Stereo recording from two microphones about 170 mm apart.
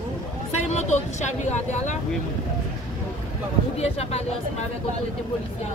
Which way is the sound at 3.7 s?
40° left (ahead or behind).